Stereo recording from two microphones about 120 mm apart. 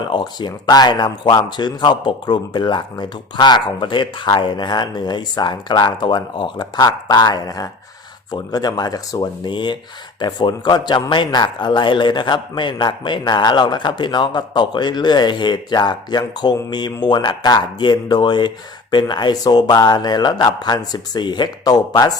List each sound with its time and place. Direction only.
0.0 s a man's voice: 40° left (ahead or behind)